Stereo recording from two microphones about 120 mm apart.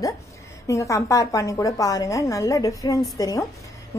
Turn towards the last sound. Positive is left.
turn(degrees=30)  # may be behind; listen again after turning